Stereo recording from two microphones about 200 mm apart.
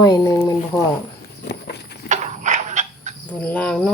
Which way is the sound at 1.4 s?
55° left (ahead or behind).